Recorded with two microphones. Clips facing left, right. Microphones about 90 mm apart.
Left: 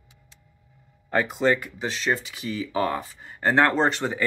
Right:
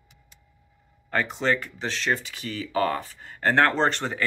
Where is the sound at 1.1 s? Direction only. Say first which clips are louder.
Left 3 dB; 5° left (ahead or behind).